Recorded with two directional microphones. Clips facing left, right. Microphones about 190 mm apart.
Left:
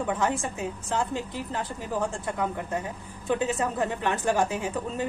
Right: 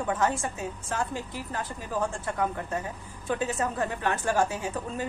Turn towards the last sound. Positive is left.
turn(degrees=20)  # may be behind; listen again after turning